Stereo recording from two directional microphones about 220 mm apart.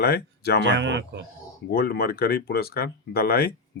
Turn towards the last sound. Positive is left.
turn(degrees=45)  # may be behind; listen again after turning